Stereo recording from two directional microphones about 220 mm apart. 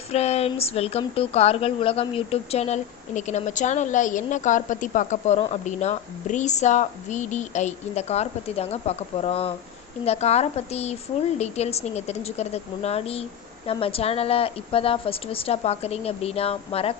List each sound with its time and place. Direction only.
0.1 s a woman's voice: 30° left (ahead or behind)